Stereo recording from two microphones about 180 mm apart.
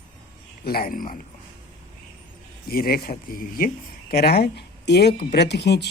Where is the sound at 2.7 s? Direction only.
55° left (ahead or behind).